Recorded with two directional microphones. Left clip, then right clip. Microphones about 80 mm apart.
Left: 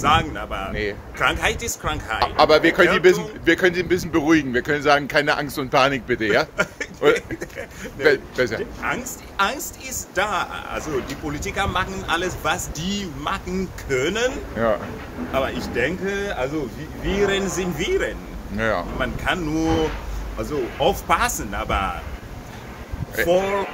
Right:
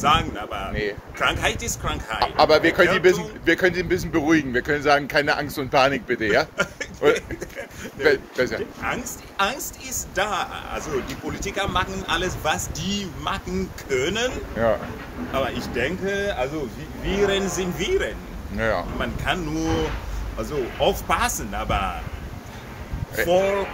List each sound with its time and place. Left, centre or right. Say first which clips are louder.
0.0 s a man's voice: left 1 dB; left
1.1 s a man's voice: left 2 dB; left
2.1 s a man's voice: left 1 dB; left
8.0 s a man's voice: left 2 dB; left
14.1 s speech: left 2 dB; left
14.5 s speech: right 1 dB; left
15.3 s a man's voice: left 2 dB; left
18.6 s speech: left 1 dB; left
18.9 s a man's voice: left 2 dB; left
23.2 s a man's voice: even; left